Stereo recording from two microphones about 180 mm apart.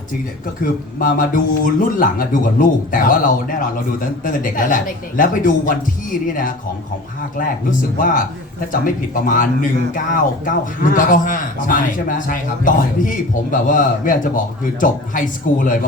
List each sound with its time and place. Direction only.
0.6 s a man's voice: 50° left (ahead or behind)